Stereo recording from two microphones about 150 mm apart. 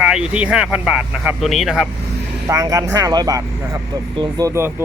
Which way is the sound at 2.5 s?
25° right (ahead or behind).